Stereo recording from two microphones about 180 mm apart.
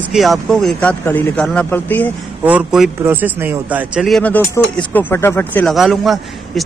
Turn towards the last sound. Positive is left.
turn(degrees=0)  # may be behind; listen again after turning